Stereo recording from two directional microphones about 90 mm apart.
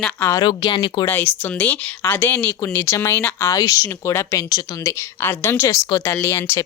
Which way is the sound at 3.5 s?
40° left (ahead or behind).